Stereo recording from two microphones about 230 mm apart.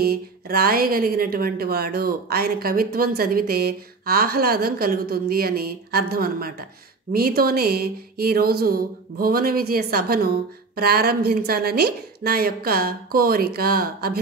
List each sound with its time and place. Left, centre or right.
0.0 s a woman's voice: right